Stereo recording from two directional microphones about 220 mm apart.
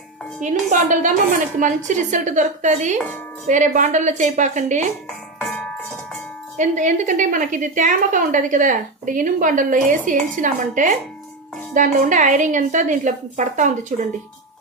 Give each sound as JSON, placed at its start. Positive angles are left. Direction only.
{"t": 0.3, "sound": "a woman's voice", "side_deg": -35}
{"t": 5.4, "sound": "music", "side_deg": 5}
{"t": 6.6, "sound": "a woman's voice", "side_deg": -35}